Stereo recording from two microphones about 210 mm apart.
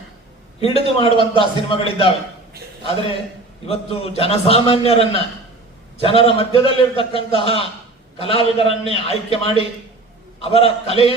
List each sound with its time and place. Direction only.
0.6 s a man's voice: 25° left (ahead or behind)
3.7 s a man's voice: 25° left (ahead or behind)